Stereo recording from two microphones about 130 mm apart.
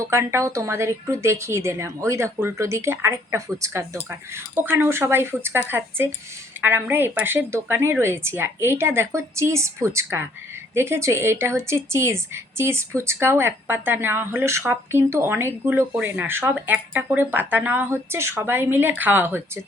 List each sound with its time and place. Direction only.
0.0 s a woman's voice: 20° right (ahead or behind)